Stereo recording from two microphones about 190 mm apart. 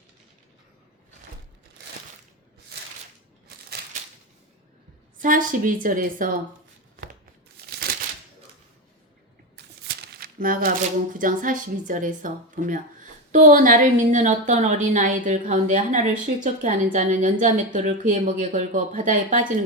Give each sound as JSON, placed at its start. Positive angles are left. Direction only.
{"t": 5.1, "sound": "a woman's voice", "side_deg": -45}
{"t": 7.1, "sound": "a sound", "side_deg": -50}
{"t": 9.8, "sound": "a woman's voice", "side_deg": -60}